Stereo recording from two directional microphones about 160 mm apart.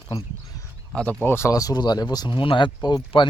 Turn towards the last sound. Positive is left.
turn(degrees=30)  # may be behind; listen again after turning